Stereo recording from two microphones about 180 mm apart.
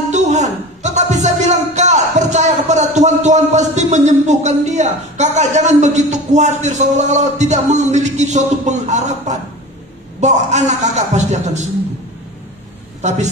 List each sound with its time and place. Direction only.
0.1 s a man's voice: 40° right (ahead or behind)